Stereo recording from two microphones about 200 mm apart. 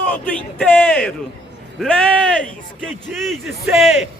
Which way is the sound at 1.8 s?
5° left (ahead or behind).